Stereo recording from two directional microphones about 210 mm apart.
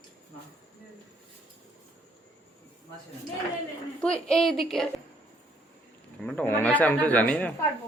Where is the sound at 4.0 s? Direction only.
5° left (ahead or behind).